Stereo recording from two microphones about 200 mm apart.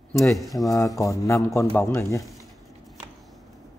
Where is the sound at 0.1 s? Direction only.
15° left (ahead or behind).